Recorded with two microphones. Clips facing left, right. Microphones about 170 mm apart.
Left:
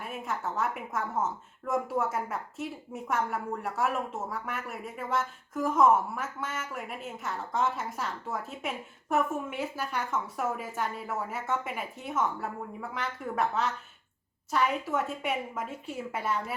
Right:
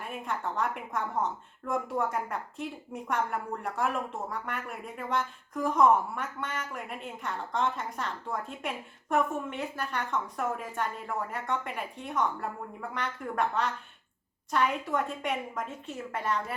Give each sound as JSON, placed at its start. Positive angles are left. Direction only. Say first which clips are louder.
{"t": 0.0, "sound": "speech", "louder": "even", "side_deg": 5}